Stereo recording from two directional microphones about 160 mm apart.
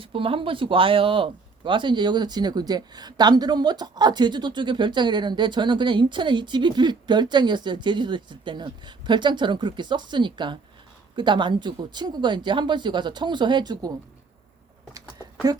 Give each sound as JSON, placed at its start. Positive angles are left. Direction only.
{"t": 0.0, "sound": "speech", "side_deg": -35}
{"t": 15.5, "sound": "speech", "side_deg": -25}